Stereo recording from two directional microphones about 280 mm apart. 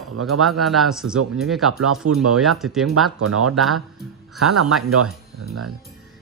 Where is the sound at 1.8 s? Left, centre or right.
Right.